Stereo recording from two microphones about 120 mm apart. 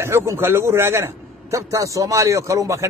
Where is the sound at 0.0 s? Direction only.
20° right (ahead or behind).